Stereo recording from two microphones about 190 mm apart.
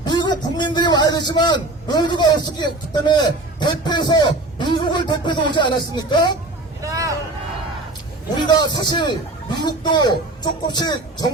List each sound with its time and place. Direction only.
0.0 s a man's voice: 25° left (ahead or behind)
6.8 s vehicle: 15° right (ahead or behind)
8.4 s speech: 25° left (ahead or behind)